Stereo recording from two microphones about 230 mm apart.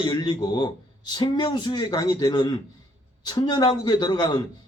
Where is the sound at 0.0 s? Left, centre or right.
Centre.